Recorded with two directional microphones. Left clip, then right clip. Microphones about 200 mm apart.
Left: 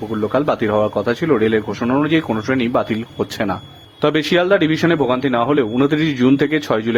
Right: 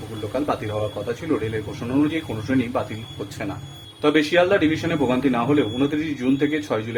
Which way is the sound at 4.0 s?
45° left (ahead or behind).